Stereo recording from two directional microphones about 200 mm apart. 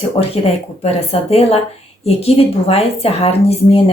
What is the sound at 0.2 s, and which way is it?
A woman's voice, 30° left (ahead or behind).